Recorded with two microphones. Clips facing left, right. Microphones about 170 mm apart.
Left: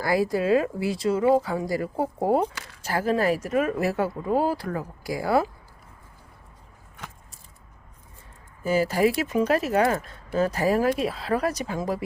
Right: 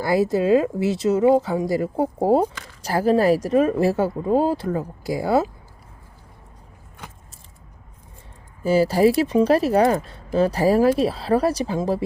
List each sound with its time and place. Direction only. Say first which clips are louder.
0.0 s speech: right 4 dB; 25° right (ahead or behind)
8.6 s speech: right 5 dB; 30° right (ahead or behind)